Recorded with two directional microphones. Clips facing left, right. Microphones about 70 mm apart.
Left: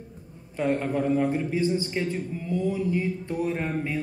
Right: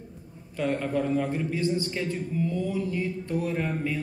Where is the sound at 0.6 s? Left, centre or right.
Centre.